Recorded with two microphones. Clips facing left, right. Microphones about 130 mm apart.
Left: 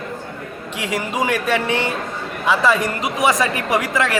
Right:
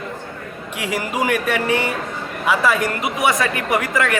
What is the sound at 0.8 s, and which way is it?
Speech, 20° left (ahead or behind).